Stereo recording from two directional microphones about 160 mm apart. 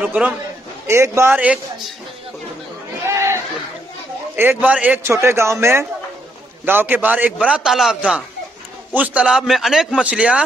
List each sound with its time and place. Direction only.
0.0 s a man's voice: 10° right (ahead or behind)
3.1 s chatter: 15° right (ahead or behind)
4.4 s a man's voice: 10° right (ahead or behind)